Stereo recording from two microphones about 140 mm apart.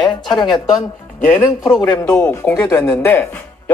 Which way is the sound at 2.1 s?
10° left (ahead or behind).